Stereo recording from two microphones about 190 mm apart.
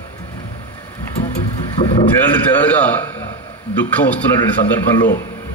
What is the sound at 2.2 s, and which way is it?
Speech, 10° left (ahead or behind).